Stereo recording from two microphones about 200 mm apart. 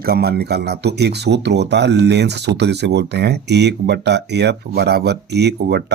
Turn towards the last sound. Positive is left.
turn(degrees=-55)  # may be behind; listen again after turning